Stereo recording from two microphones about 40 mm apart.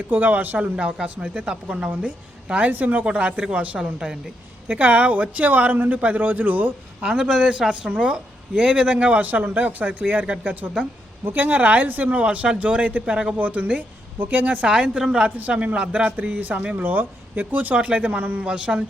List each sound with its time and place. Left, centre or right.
0.1 s speech: right
1.0 s a woman's voice: right
1.3 s a woman's voice: right
7.2 s a woman's voice: right
14.2 s speech: right
14.6 s speech: right
15.2 s a woman's voice: right
16.1 s speech: right
18.4 s speech: right